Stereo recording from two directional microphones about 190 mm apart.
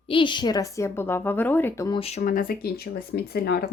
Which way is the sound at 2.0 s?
35° left (ahead or behind).